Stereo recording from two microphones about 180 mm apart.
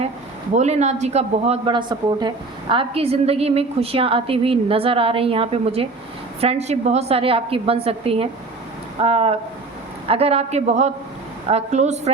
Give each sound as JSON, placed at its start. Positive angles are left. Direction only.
{"t": 0.5, "sound": "speech", "side_deg": -40}